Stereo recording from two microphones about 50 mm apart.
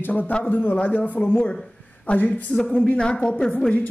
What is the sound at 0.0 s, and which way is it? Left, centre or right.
Speech, left.